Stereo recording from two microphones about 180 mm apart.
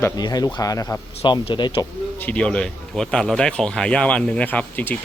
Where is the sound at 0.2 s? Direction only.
20° left (ahead or behind).